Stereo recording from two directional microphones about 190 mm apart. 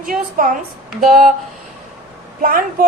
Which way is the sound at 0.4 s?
50° right (ahead or behind).